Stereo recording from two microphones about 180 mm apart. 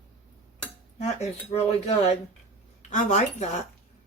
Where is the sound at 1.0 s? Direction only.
35° left (ahead or behind).